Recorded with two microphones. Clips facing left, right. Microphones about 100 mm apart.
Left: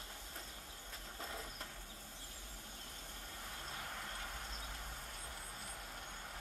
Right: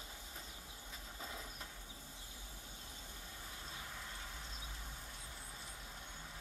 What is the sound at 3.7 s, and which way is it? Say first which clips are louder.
Train: left 3 dB; 55° left (ahead or behind).